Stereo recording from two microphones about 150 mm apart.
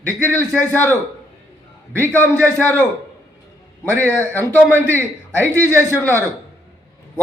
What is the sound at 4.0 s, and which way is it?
A man's voice, 15° left (ahead or behind).